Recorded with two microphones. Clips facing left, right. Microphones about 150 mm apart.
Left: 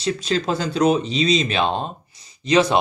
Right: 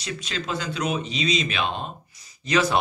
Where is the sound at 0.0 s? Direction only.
35° left (ahead or behind).